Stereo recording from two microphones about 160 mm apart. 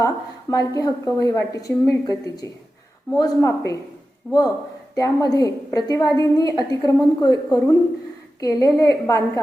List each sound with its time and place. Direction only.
0.5 s a woman's voice: 25° left (ahead or behind)